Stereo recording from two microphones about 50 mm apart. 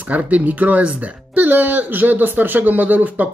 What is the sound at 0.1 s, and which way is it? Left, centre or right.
Speech, right.